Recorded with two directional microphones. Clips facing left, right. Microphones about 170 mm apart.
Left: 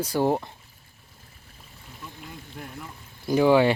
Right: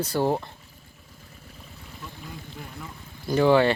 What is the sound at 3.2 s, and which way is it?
Speech, 10° left (ahead or behind).